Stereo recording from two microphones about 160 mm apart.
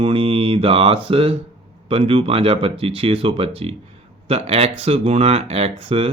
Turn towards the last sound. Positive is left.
turn(degrees=-40)  # may be behind; listen again after turning